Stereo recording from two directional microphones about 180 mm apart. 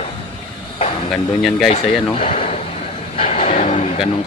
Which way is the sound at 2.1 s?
35° left (ahead or behind).